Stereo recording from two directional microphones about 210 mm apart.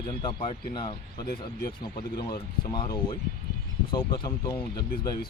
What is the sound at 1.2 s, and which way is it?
Speech, 45° left (ahead or behind).